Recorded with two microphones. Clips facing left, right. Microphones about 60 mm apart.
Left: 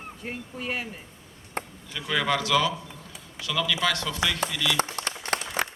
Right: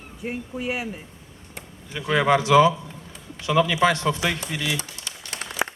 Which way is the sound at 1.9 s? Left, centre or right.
Right.